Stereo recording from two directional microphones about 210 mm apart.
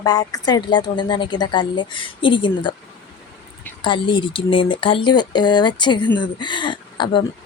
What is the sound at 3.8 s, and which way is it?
Speech, 25° left (ahead or behind).